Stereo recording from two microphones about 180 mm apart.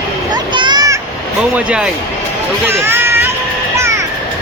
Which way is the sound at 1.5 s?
5° right (ahead or behind).